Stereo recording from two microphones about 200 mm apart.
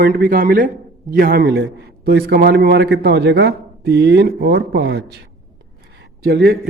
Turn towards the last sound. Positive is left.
turn(degrees=-55)  # may be behind; listen again after turning